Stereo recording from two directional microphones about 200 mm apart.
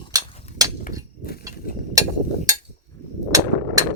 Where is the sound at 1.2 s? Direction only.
50° left (ahead or behind).